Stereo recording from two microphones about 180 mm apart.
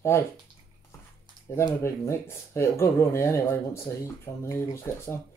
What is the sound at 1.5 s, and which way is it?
Speech, 15° left (ahead or behind).